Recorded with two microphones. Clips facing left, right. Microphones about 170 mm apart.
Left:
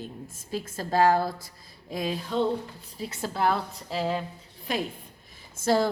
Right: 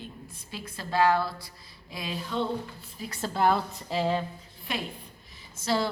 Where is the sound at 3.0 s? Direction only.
25° left (ahead or behind).